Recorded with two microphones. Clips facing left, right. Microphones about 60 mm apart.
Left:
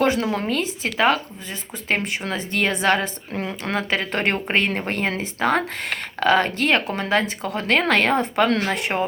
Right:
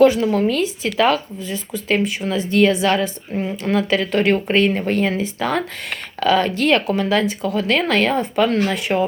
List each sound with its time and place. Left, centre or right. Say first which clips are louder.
0.0 s speech: right 7 dB; left